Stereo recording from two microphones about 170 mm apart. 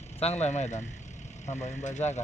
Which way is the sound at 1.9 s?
40° left (ahead or behind).